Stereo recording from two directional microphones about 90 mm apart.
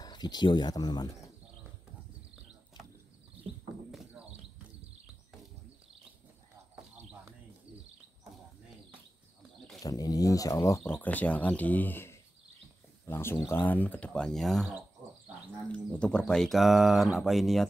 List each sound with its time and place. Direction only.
0.0 s speech: 50° left (ahead or behind)
9.8 s speech: 40° left (ahead or behind)
10.8 s speech: 20° left (ahead or behind); by 14.7 s 5° left (ahead or behind)
15.7 s speech: 10° left (ahead or behind)